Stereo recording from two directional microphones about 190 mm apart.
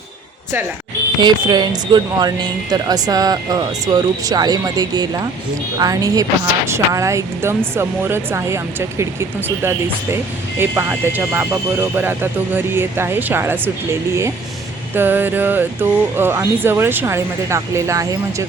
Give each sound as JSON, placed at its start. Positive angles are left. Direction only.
{"t": 1.2, "sound": "a woman's voice", "side_deg": -25}
{"t": 10.6, "sound": "speech", "side_deg": -10}
{"t": 14.9, "sound": "speech", "side_deg": -10}